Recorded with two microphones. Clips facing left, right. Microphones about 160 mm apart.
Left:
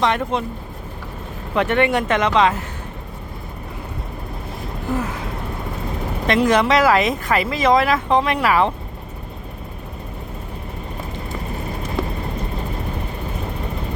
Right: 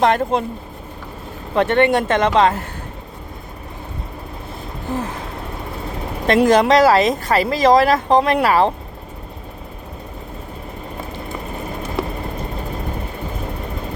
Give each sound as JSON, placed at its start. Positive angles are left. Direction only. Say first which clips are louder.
{"t": 0.0, "sound": "speech", "louder": "right 4 dB", "side_deg": -40}
{"t": 1.5, "sound": "speech", "louder": "right 3 dB", "side_deg": -30}
{"t": 2.2, "sound": "a woman's voice", "louder": "right 2 dB", "side_deg": -45}
{"t": 6.2, "sound": "speech", "louder": "right 3 dB", "side_deg": -45}